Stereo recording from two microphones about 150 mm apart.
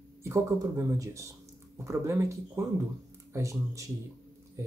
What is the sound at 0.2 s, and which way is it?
Speech, 20° right (ahead or behind).